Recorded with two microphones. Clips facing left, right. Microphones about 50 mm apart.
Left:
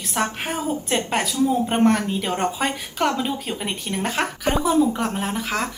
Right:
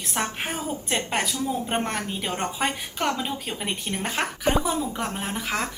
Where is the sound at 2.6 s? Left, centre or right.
Right.